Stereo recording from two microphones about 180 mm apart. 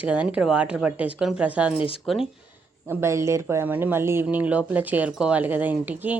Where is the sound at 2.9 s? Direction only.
15° right (ahead or behind).